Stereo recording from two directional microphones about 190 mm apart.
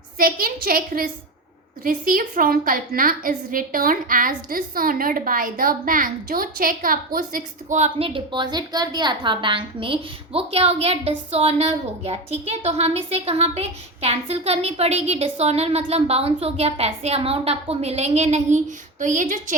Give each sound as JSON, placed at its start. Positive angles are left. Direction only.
{"t": 0.2, "sound": "a woman's voice", "side_deg": -50}